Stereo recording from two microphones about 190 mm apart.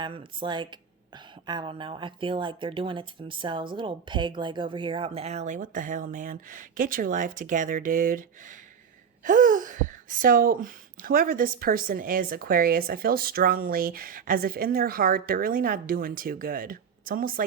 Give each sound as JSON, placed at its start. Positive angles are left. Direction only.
{"t": 0.0, "sound": "speech", "side_deg": -25}